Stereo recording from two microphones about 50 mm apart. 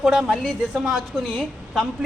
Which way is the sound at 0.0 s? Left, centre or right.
Centre.